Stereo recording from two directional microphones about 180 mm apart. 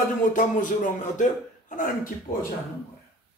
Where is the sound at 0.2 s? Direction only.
45° left (ahead or behind).